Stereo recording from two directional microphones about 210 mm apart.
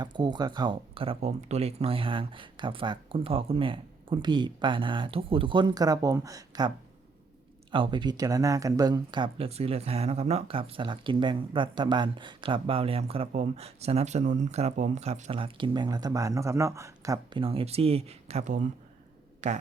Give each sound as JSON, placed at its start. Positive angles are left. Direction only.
{"t": 0.0, "sound": "speech", "side_deg": -20}